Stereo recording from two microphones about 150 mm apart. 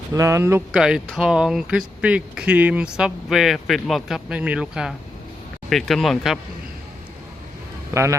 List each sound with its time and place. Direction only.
0.1 s speech: 20° right (ahead or behind)
0.7 s speech: 5° right (ahead or behind)